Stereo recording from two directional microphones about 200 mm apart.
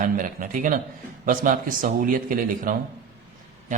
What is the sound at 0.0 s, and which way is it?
A man's voice, 45° right (ahead or behind).